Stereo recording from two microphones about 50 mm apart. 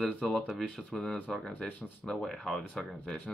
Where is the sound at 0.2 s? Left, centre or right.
Centre.